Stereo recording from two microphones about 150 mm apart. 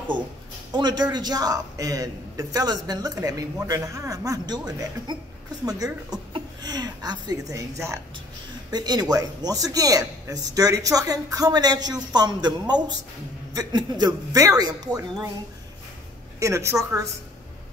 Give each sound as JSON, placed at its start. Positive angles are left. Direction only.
{"t": 0.7, "sound": "a man's voice", "side_deg": -30}
{"t": 16.3, "sound": "a man's voice", "side_deg": -20}